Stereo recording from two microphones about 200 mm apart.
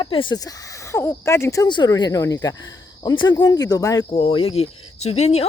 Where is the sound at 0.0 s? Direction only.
25° left (ahead or behind).